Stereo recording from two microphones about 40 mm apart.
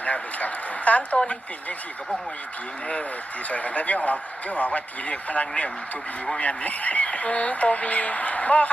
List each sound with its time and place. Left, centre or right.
0.0 s a sound: left
1.1 s speech: left
3.5 s speech: left